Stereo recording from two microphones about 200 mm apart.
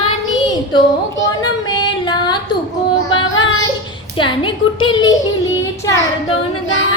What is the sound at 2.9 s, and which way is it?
Music, 80° left.